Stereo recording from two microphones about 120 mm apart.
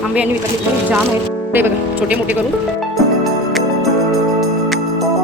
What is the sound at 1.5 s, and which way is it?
Speech, 15° right (ahead or behind).